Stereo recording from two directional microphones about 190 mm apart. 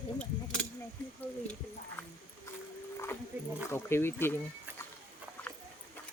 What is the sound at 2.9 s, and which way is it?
Dog, 10° left (ahead or behind).